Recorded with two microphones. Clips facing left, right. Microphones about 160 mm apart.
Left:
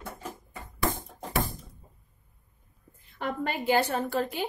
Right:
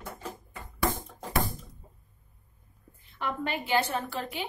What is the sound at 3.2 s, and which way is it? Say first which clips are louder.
A woman's voice: left 1 dB; 40° left (ahead or behind).